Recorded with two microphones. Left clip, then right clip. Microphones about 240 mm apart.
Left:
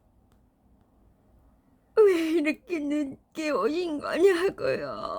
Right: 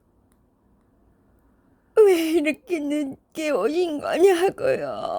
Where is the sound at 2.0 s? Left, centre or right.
Right.